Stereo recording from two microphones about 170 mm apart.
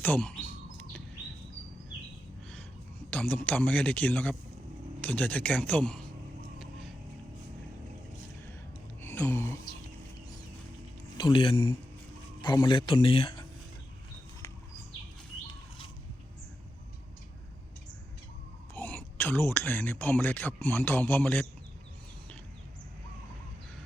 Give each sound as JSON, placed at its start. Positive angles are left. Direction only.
{"t": 0.0, "sound": "chirp", "side_deg": 10}
{"t": 3.1, "sound": "a man's voice", "side_deg": 10}
{"t": 9.0, "sound": "a sound", "side_deg": 15}
{"t": 11.2, "sound": "speech", "side_deg": 30}
{"t": 18.7, "sound": "a man's voice", "side_deg": 10}